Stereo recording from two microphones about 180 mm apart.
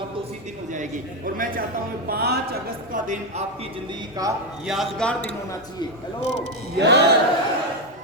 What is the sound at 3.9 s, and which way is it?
Speech, 20° right (ahead or behind).